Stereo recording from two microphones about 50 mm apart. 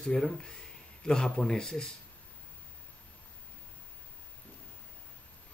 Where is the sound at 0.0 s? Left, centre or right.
Centre.